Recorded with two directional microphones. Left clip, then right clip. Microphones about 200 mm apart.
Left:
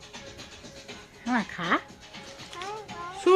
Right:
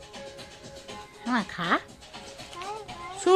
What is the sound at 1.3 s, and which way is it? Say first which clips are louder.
Speech: even; centre (ahead or behind).